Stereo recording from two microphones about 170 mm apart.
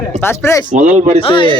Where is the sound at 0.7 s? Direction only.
45° right (ahead or behind).